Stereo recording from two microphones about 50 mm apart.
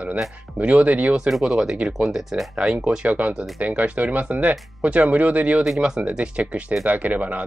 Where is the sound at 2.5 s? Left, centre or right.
Centre.